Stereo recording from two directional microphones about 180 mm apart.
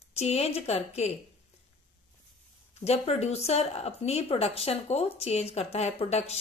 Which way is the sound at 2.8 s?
35° left (ahead or behind).